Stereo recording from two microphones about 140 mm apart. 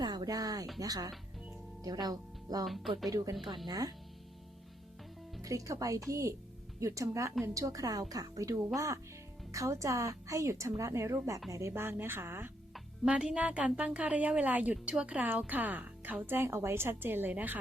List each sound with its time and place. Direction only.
0.0 s a sound: 30° right (ahead or behind)
0.8 s speech: 25° right (ahead or behind)
2.6 s speech: centre (ahead or behind)
3.1 s speech: 20° right (ahead or behind)
5.4 s speech: 25° right (ahead or behind)
12.7 s speech: 5° right (ahead or behind)